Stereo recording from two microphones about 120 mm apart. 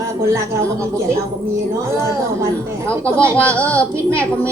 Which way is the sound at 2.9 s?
10° left (ahead or behind).